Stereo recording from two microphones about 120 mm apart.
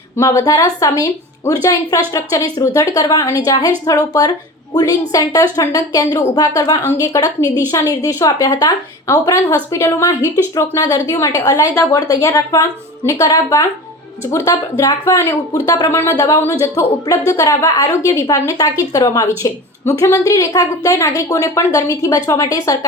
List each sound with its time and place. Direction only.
0.2 s a woman's voice: 25° left (ahead or behind)